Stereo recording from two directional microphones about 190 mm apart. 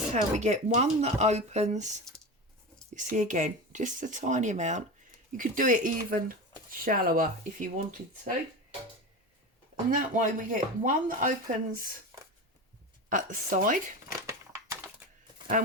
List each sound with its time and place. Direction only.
0.1 s speech: 40° right (ahead or behind)
9.9 s speech: 45° right (ahead or behind)
13.1 s speech: 45° right (ahead or behind)
14.3 s a sound: 15° right (ahead or behind)
15.6 s speech: 45° right (ahead or behind)